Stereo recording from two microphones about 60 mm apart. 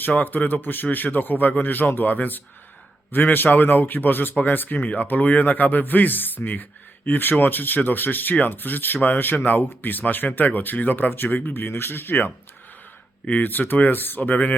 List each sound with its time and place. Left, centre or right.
0.0 s speech: left